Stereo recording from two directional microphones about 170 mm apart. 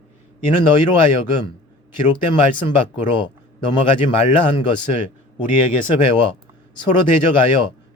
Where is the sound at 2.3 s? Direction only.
30° left (ahead or behind).